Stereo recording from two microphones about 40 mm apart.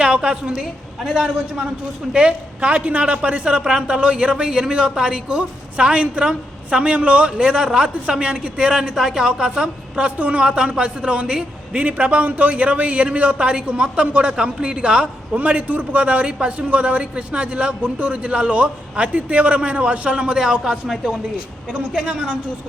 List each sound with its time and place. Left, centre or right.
0.0 s a woman's voice: right
2.1 s a man's voice: right
3.6 s a man's voice: centre
10.2 s a man's voice: right
10.4 s a man's voice: right
15.4 s a man's voice: right; by 20.7 s centre
21.7 s a man's voice: right